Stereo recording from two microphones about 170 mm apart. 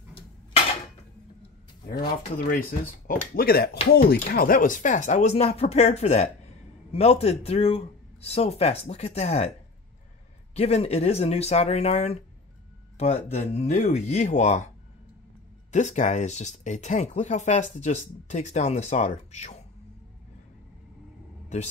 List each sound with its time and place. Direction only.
1.9 s speech: 60° left (ahead or behind); by 9.5 s 40° left (ahead or behind)
10.5 s speech: 40° left (ahead or behind)
15.7 s speech: 45° left (ahead or behind)